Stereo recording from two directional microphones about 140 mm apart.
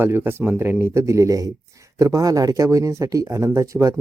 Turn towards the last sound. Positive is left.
turn(degrees=-20)  # may be behind; listen again after turning